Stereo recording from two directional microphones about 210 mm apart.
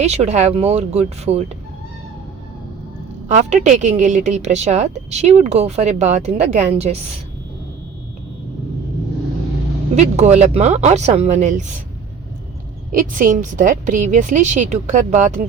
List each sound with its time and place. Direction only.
0.0 s a woman's voice: 30° right (ahead or behind)
3.2 s a woman's voice: 35° right (ahead or behind)
9.9 s a woman's voice: 30° right (ahead or behind)
12.9 s a woman's voice: 40° right (ahead or behind)